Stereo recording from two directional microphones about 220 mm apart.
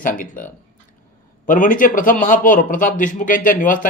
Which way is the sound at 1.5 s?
35° left (ahead or behind).